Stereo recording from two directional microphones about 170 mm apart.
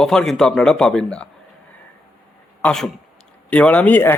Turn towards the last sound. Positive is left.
turn(degrees=10)  # may be behind; listen again after turning